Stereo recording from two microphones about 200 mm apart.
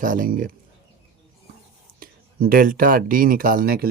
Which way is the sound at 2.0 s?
45° right (ahead or behind).